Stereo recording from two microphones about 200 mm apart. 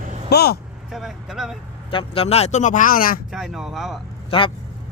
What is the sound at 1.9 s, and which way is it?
Speech, 25° left (ahead or behind).